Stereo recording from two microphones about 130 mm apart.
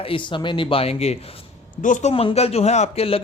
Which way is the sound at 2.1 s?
50° left (ahead or behind).